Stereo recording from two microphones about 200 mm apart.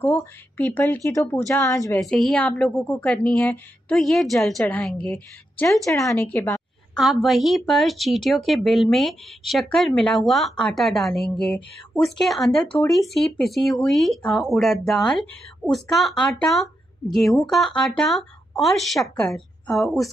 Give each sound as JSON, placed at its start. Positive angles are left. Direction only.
{"t": 0.0, "sound": "speech", "side_deg": 10}
{"t": 2.0, "sound": "a woman's voice", "side_deg": 0}